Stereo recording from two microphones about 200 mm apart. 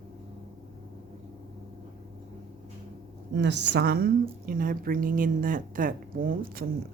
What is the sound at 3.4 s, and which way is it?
Speech, 60° right (ahead or behind).